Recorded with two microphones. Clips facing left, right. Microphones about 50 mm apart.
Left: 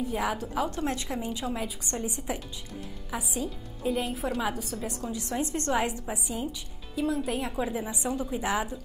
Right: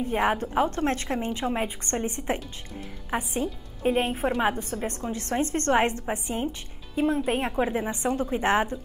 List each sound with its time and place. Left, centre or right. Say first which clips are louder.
0.0 s a woman's voice: right 5 dB; right